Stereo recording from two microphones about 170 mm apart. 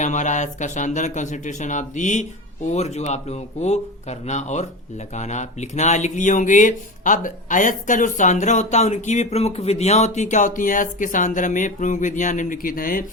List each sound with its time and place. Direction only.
0.0 s speech: 45° left (ahead or behind)